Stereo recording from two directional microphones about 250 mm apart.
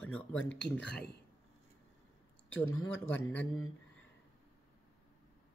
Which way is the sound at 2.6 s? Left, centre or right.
Centre.